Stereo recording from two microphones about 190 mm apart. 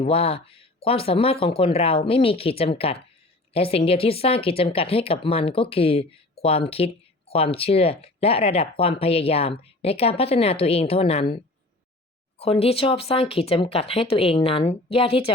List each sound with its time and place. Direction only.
0.0 s speech: 30° left (ahead or behind)
12.4 s speech: 30° left (ahead or behind)